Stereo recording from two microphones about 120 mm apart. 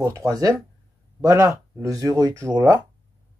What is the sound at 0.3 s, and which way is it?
Speech, 30° right (ahead or behind).